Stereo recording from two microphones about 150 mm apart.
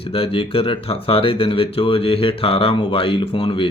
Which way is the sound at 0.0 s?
40° left (ahead or behind).